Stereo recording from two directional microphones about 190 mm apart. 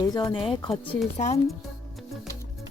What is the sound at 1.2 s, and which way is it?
Speech, 40° left (ahead or behind).